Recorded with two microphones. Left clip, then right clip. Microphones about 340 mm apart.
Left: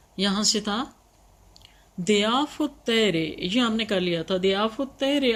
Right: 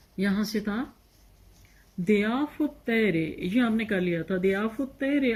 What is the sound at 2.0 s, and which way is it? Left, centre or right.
Speech, left.